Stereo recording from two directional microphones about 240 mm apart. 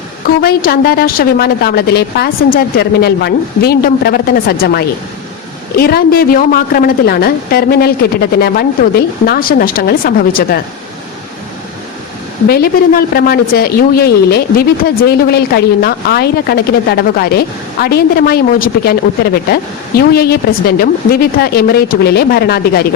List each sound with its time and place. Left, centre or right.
0.4 s a man's voice: left
12.5 s a man's voice: left